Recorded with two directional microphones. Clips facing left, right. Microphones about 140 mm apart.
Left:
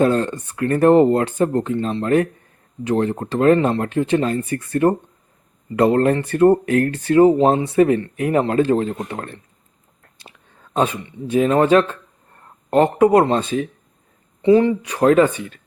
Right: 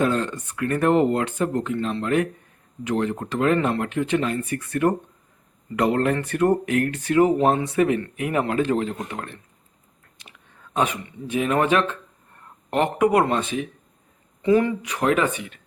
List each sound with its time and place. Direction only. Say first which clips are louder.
0.0 s speech: left 5 dB; 35° left (ahead or behind)
10.8 s speech: left 4 dB; 30° left (ahead or behind)